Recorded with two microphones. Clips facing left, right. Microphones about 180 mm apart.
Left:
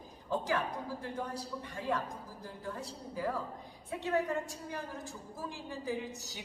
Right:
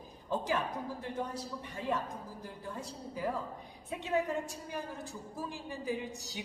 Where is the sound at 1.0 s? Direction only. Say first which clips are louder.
Right 1 dB; 20° right (ahead or behind).